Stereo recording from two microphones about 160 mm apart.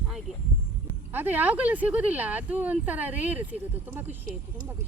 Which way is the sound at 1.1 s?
10° right (ahead or behind).